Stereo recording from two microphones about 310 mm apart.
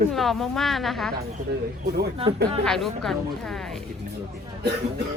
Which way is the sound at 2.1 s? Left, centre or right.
Centre.